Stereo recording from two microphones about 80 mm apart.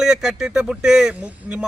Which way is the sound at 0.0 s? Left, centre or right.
Centre.